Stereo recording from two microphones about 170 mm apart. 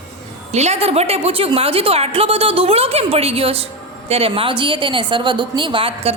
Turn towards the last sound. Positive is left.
turn(degrees=-35)  # may be behind; listen again after turning